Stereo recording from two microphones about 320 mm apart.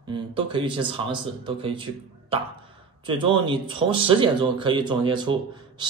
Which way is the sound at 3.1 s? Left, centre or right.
Centre.